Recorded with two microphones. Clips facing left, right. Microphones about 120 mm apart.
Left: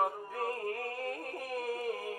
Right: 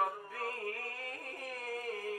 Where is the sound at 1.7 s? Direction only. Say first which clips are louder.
Left 1 dB; 20° left (ahead or behind).